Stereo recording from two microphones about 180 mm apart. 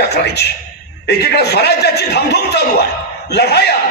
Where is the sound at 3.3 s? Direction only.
65° left (ahead or behind).